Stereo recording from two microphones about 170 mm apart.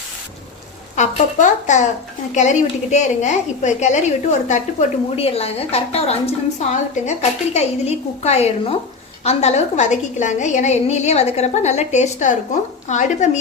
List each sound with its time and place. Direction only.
0.9 s a woman's voice: 45° left (ahead or behind)